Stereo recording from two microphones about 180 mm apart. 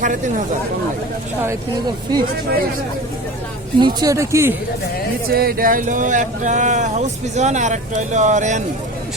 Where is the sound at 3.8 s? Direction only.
20° right (ahead or behind).